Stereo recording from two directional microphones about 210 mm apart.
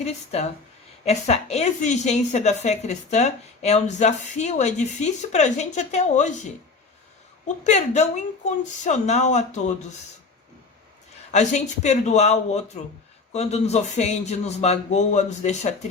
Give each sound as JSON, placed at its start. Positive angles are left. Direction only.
{"t": 0.0, "sound": "a woman's voice", "side_deg": 30}
{"t": 7.4, "sound": "a woman's voice", "side_deg": 35}
{"t": 11.3, "sound": "a woman's voice", "side_deg": 35}